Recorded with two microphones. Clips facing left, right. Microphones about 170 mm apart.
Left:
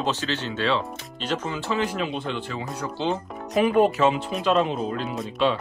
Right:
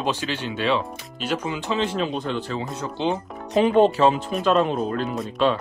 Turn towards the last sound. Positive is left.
turn(degrees=-50)  # may be behind; listen again after turning